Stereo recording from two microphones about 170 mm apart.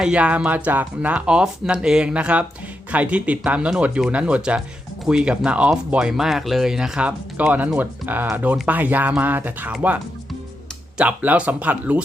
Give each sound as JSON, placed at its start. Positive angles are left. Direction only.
{"t": 0.0, "sound": "speech", "side_deg": -5}